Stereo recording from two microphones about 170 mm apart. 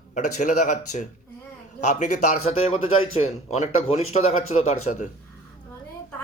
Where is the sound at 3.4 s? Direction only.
40° left (ahead or behind).